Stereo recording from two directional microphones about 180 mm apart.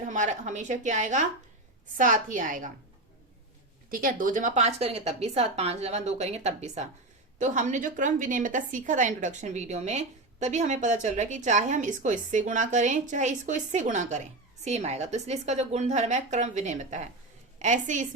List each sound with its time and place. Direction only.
0.0 s a woman's voice: 45° right (ahead or behind)
3.8 s a woman's voice: 50° right (ahead or behind)